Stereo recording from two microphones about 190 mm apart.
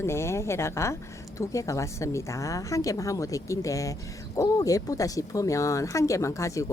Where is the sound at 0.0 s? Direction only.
15° left (ahead or behind).